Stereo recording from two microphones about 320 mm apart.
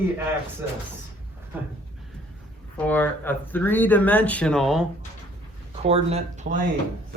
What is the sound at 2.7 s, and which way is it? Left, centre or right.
Speech, centre.